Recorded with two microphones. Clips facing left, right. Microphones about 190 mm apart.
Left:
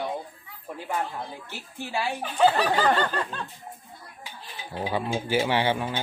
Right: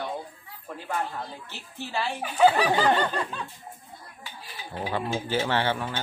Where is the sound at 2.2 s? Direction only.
10° right (ahead or behind).